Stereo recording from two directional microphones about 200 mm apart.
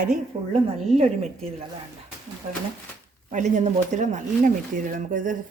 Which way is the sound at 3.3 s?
40° right (ahead or behind).